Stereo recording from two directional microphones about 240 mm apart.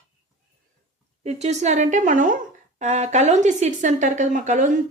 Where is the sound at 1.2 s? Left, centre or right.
Right.